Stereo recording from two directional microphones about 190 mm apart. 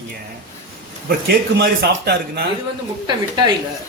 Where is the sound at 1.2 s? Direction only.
60° right (ahead or behind).